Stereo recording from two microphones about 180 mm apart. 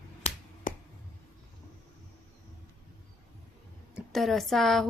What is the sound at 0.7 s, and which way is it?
Finger snapping, 50° left (ahead or behind).